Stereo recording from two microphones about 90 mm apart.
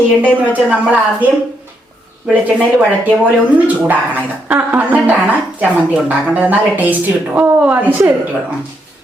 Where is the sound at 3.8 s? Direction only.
20° right (ahead or behind).